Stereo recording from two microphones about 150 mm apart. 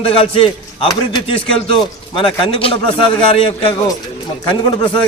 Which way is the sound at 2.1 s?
35° left (ahead or behind).